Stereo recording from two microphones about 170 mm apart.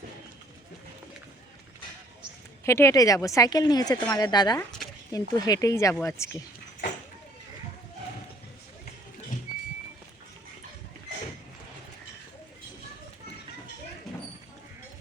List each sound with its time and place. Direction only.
2.6 s speech: 15° left (ahead or behind)